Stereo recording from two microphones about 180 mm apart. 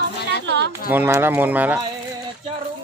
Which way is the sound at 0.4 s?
75° right (ahead or behind).